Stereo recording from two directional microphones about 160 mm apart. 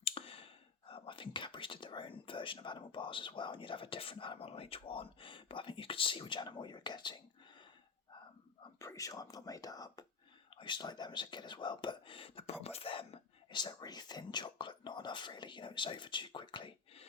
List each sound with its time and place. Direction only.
0.0 s speech: 35° left (ahead or behind)
8.8 s speech: 20° left (ahead or behind); by 17.1 s 35° left (ahead or behind)